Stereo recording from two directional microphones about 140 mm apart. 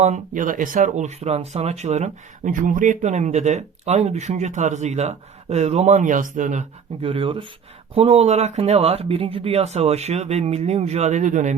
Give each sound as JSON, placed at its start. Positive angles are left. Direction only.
{"t": 0.0, "sound": "speech", "side_deg": -60}
{"t": 7.0, "sound": "speech", "side_deg": -40}